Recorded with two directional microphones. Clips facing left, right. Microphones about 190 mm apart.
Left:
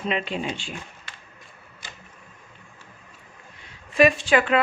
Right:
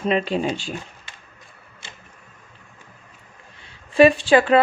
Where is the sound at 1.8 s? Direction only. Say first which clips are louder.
Even; 25° right (ahead or behind).